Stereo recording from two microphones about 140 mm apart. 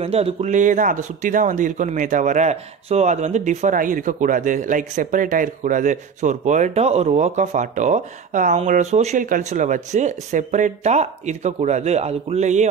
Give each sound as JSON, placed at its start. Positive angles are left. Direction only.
{"t": 0.0, "sound": "speech", "side_deg": -45}